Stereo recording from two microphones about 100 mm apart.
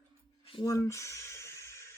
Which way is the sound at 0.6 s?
30° left (ahead or behind).